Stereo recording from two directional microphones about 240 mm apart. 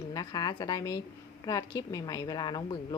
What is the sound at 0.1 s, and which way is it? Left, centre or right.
Speech, centre.